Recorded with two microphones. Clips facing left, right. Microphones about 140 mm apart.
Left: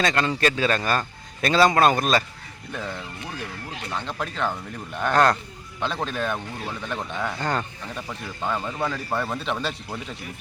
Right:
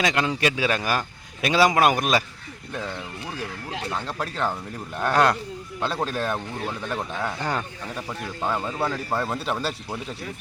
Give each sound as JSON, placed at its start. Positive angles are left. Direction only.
{"t": 0.0, "sound": "a man's voice", "side_deg": -10}
{"t": 3.9, "sound": "a man's voice", "side_deg": -5}